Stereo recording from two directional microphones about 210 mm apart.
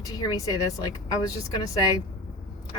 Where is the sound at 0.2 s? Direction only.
20° left (ahead or behind).